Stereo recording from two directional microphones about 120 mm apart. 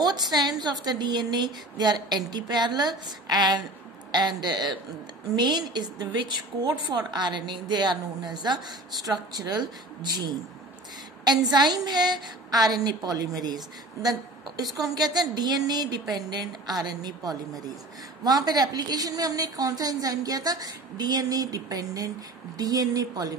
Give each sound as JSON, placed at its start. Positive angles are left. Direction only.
{"t": 0.0, "sound": "a woman's voice", "side_deg": -35}
{"t": 15.0, "sound": "a woman's voice", "side_deg": -35}